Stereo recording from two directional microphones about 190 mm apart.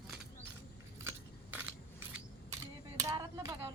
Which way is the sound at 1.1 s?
10° right (ahead or behind).